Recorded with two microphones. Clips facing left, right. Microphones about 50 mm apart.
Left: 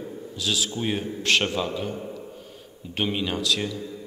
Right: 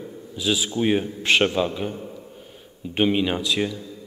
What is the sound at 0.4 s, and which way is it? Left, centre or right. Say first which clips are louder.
A man's voice: right 5 dB; centre.